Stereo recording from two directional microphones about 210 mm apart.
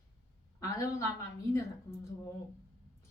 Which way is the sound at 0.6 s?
15° left (ahead or behind).